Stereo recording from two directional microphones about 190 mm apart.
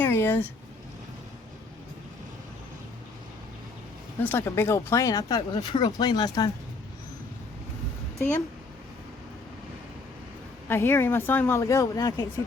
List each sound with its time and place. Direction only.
0.0 s a sound: 10° left (ahead or behind)
4.2 s speech: 10° left (ahead or behind)
10.7 s speech: 10° left (ahead or behind)